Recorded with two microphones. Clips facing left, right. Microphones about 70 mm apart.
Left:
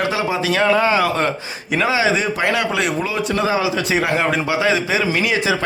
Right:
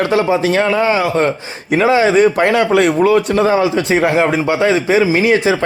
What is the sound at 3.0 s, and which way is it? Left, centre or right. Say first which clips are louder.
Speech: right 10 dB; right.